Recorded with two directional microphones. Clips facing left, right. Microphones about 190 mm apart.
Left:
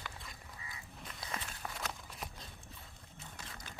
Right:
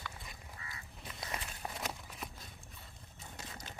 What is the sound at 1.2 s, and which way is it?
Walk, 20° right (ahead or behind).